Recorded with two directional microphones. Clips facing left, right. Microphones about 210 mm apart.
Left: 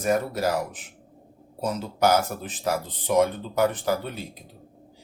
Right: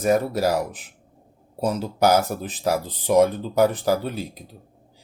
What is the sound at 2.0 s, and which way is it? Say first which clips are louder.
Speech: right 3 dB; 40° right (ahead or behind).